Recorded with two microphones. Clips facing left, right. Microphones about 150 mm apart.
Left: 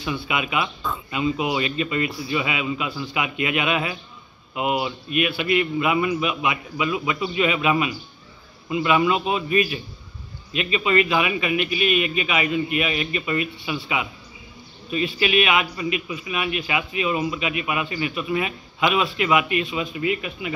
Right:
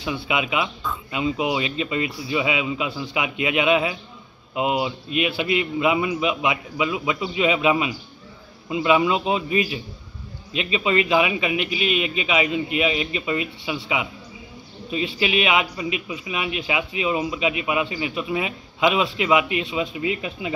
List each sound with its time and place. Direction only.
0.0 s a man's voice: 15° right (ahead or behind)
14.9 s a man's voice: 20° right (ahead or behind)